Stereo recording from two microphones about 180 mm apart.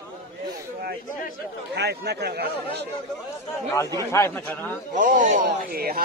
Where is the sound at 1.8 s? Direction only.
65° right (ahead or behind).